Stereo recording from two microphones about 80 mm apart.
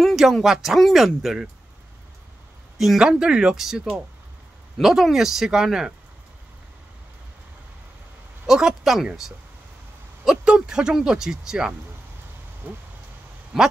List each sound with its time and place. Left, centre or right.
0.0 s speech: centre
2.8 s speech: centre
8.5 s speech: centre
10.2 s speech: centre
12.6 s a sound: right
13.5 s speech: centre